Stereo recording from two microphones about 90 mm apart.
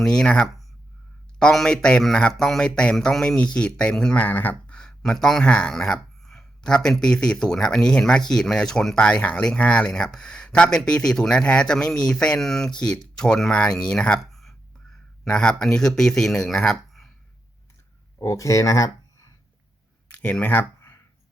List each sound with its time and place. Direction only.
0.0 s a man's voice: 10° left (ahead or behind)
18.2 s speech: 35° left (ahead or behind)
20.1 s a sound: 15° left (ahead or behind)